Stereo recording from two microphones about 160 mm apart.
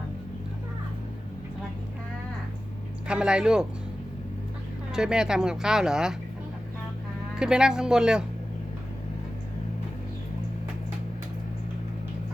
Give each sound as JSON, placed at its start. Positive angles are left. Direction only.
{"t": 3.1, "sound": "speech", "side_deg": -5}
{"t": 4.9, "sound": "speech", "side_deg": -5}
{"t": 7.3, "sound": "speech", "side_deg": -5}